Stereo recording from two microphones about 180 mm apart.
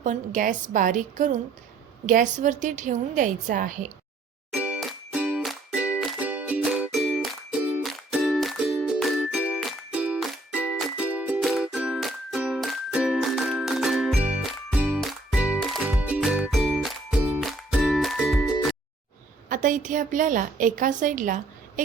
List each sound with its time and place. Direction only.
0.0 s a woman's voice: 45° right (ahead or behind)
4.5 s music: 5° right (ahead or behind)
19.5 s a woman's voice: 45° right (ahead or behind)